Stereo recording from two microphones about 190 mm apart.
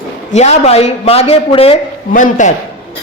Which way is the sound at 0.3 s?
35° left (ahead or behind).